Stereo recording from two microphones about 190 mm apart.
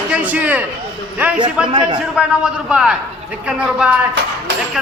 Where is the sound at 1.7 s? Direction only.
30° right (ahead or behind).